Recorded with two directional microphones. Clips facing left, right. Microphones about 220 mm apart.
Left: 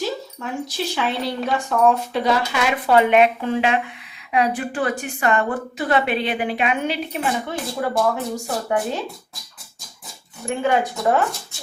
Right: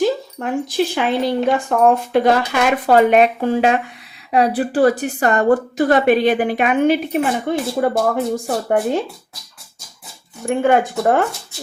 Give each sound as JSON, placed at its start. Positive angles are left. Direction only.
{"t": 0.0, "sound": "a sound", "side_deg": -55}
{"t": 0.9, "sound": "a woman's voice", "side_deg": -50}
{"t": 10.5, "sound": "a woman's voice", "side_deg": -55}